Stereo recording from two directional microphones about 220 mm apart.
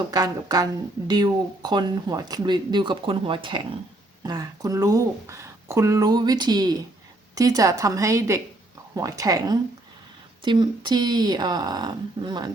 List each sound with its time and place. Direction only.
0.1 s speech: 15° right (ahead or behind)